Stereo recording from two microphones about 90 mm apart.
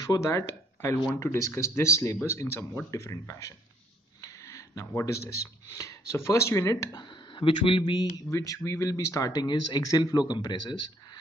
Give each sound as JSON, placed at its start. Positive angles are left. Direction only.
{"t": 0.0, "sound": "speech", "side_deg": 45}
{"t": 0.4, "sound": "speech", "side_deg": 30}
{"t": 4.2, "sound": "a sound", "side_deg": 35}
{"t": 5.7, "sound": "speech", "side_deg": 35}
{"t": 7.0, "sound": "speech", "side_deg": 60}
{"t": 8.3, "sound": "speech", "side_deg": 35}